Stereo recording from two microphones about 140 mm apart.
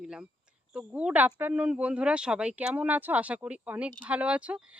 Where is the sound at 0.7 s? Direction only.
10° right (ahead or behind).